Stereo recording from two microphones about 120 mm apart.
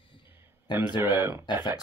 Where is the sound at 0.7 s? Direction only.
35° left (ahead or behind).